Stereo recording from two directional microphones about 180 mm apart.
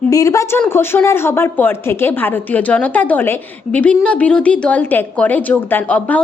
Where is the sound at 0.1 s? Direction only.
20° left (ahead or behind).